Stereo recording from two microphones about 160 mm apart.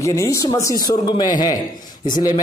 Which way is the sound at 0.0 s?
20° left (ahead or behind).